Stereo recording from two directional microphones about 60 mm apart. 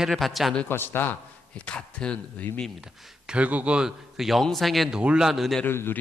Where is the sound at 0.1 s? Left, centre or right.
Centre.